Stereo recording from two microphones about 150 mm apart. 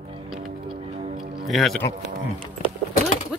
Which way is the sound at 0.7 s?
45° right (ahead or behind).